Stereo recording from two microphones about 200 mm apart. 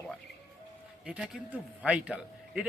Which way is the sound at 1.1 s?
5° right (ahead or behind).